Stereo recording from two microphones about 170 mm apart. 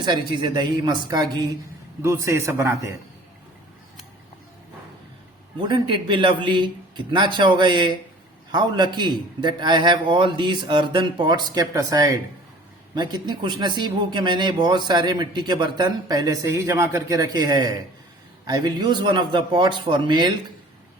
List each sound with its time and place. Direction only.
0.0 s a man's voice: 25° right (ahead or behind)
5.5 s speech: 30° right (ahead or behind)